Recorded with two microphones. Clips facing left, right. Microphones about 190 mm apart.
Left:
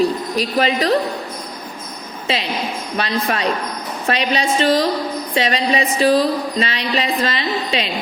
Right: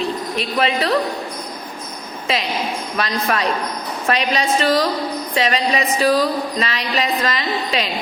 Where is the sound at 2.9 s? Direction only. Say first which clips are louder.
Left 1 dB; 30° left (ahead or behind).